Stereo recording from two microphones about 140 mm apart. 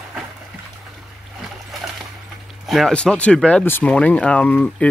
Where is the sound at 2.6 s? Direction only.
Centre (ahead or behind).